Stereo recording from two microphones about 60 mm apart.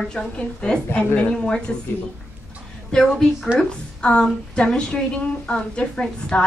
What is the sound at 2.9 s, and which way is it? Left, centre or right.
A woman's voice, centre.